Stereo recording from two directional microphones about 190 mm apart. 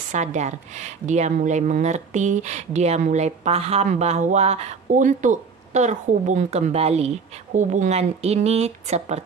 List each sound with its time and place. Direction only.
0.1 s a woman's voice: 40° right (ahead or behind)